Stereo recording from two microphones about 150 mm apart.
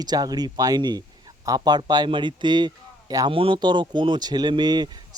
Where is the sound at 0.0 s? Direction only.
25° right (ahead or behind).